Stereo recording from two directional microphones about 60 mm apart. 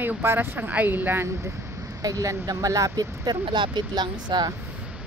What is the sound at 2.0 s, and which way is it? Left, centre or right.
Speech, right.